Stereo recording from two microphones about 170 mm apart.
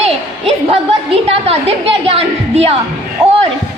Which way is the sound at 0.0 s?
35° right (ahead or behind).